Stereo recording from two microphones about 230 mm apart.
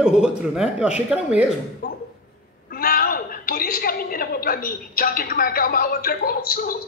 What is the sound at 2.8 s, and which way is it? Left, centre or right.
A woman's voice, left.